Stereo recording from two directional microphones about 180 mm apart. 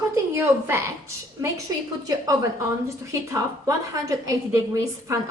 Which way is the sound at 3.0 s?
15° right (ahead or behind).